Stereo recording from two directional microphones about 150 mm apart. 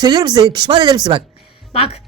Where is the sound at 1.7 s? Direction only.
40° left (ahead or behind).